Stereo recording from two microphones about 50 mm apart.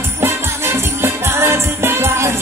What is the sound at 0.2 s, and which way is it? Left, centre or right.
Music, right.